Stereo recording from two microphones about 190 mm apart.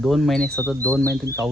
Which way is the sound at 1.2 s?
15° right (ahead or behind).